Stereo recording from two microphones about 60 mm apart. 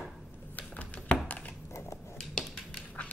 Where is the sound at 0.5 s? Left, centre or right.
Left.